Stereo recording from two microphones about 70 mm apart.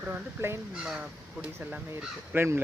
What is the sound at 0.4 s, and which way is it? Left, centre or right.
Speech, right.